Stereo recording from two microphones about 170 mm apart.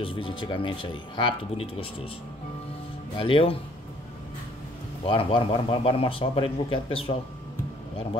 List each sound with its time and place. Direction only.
0.0 s speech: 30° left (ahead or behind)
3.2 s speech: 30° left (ahead or behind)
5.0 s speech: 30° left (ahead or behind)